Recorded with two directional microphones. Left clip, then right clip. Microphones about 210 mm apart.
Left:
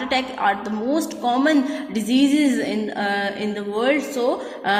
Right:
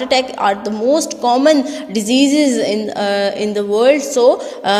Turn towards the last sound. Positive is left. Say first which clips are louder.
# right 6 dB
turn(degrees=-45)  # may be behind; listen again after turning